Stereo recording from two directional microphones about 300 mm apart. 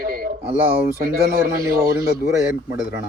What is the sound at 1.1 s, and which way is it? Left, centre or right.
Speech, right.